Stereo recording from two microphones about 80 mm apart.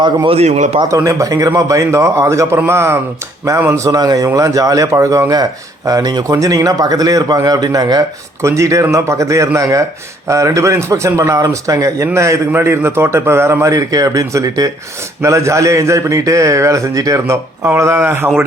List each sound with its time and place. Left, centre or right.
0.9 s a man's voice: right
3.7 s speech: right
8.4 s a man's voice: right
13.7 s a man's voice: right